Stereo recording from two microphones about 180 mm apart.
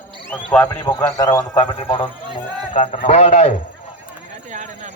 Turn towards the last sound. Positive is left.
turn(degrees=-45)  # may be behind; listen again after turning